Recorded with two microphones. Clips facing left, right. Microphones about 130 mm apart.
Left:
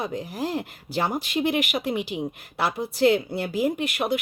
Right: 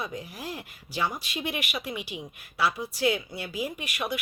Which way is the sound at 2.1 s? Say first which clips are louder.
Left 10 dB; 35° left (ahead or behind).